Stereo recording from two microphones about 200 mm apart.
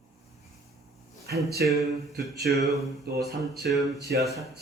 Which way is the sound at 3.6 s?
Centre (ahead or behind).